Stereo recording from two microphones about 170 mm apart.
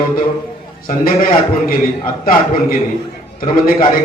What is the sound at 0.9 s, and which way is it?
Speech, 55° left (ahead or behind).